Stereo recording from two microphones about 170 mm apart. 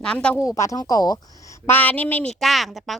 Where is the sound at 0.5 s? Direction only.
20° left (ahead or behind).